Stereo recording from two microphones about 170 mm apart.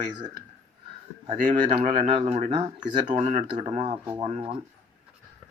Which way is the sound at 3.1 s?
40° right (ahead or behind).